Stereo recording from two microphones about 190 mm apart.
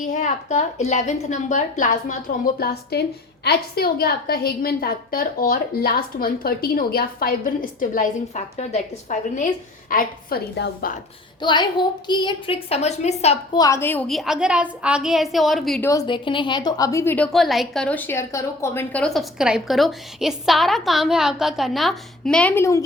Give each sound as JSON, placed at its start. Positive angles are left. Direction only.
{"t": 0.1, "sound": "a woman's voice", "side_deg": 40}
{"t": 2.6, "sound": "a woman's voice", "side_deg": 55}
{"t": 11.4, "sound": "a woman's voice", "side_deg": 25}
{"t": 13.5, "sound": "a woman's voice", "side_deg": 20}
{"t": 14.1, "sound": "a woman's voice", "side_deg": 0}
{"t": 15.9, "sound": "a woman's voice", "side_deg": 20}
{"t": 17.3, "sound": "a woman's voice", "side_deg": 0}